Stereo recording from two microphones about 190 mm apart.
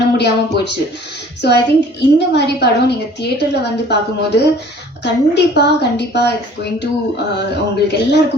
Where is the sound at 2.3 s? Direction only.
60° left (ahead or behind).